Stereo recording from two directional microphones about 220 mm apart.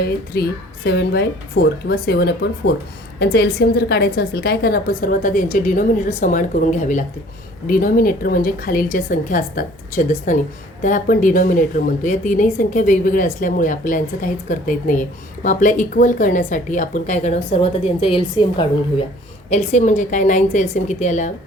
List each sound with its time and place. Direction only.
0.3 s a woman's voice: 45° left (ahead or behind)